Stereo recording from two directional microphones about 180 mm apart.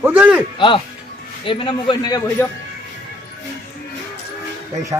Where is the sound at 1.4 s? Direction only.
30° left (ahead or behind).